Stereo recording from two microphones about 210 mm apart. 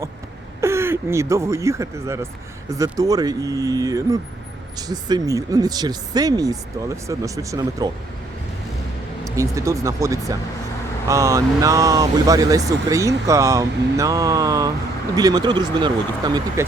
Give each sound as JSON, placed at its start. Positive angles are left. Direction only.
{"t": 0.6, "sound": "speech", "side_deg": -10}
{"t": 9.2, "sound": "speech", "side_deg": -15}